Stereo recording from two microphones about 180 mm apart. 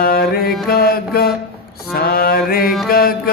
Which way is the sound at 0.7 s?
60° left (ahead or behind).